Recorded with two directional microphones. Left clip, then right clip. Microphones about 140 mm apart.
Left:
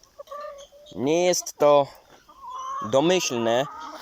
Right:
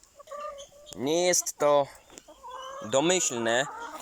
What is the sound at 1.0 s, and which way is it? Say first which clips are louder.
Speech: left 4 dB; 5° left (ahead or behind).